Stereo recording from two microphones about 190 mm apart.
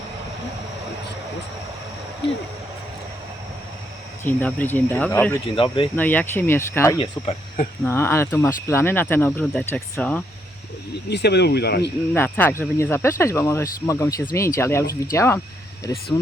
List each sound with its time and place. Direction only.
2.2 s speech: 65° left (ahead or behind)
4.2 s speech: 10° left (ahead or behind)
5.5 s speech: 25° left (ahead or behind)
6.0 s speech: 10° left (ahead or behind)
11.1 s speech: 60° left (ahead or behind)
12.1 s speech: 10° left (ahead or behind)